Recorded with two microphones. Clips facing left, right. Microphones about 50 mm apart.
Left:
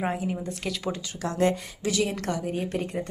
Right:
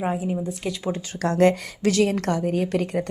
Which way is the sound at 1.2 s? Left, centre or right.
Right.